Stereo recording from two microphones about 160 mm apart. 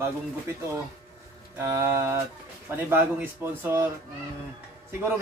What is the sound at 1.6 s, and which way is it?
Speech, 15° right (ahead or behind).